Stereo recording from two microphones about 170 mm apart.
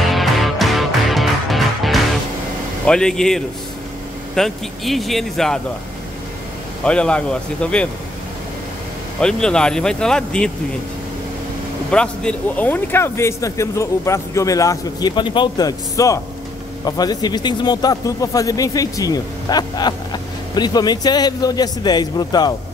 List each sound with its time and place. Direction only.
0.1 s music: centre (ahead or behind)
2.9 s speech: 5° left (ahead or behind)
6.8 s speech: 5° left (ahead or behind)
9.2 s speech: 5° left (ahead or behind)
11.9 s speech: 5° left (ahead or behind); by 22.5 s 25° left (ahead or behind)